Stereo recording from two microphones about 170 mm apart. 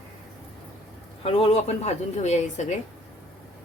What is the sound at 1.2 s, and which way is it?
A woman's voice, 35° left (ahead or behind).